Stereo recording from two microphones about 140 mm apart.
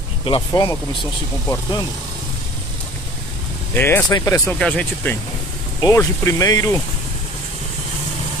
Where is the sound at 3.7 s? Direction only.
15° left (ahead or behind).